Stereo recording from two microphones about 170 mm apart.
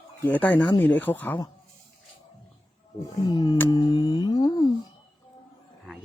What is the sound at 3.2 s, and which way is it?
Speech, 25° left (ahead or behind).